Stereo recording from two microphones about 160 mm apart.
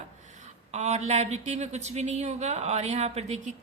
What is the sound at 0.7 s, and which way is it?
A woman's voice, 45° right (ahead or behind).